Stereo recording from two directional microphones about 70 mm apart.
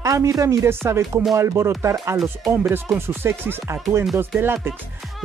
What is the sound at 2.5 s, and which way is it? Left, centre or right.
Speech, right.